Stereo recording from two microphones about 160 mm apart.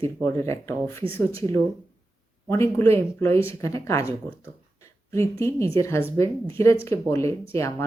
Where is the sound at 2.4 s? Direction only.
20° left (ahead or behind).